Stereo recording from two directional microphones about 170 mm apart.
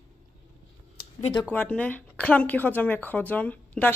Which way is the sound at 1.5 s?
5° left (ahead or behind).